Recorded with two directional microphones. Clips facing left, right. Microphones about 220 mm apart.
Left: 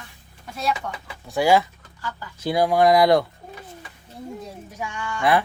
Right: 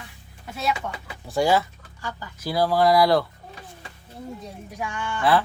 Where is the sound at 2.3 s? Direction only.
20° left (ahead or behind).